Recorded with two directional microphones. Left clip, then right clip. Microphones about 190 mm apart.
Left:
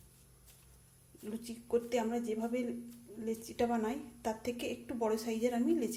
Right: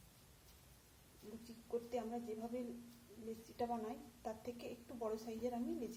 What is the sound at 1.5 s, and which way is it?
A woman's voice, 20° left (ahead or behind).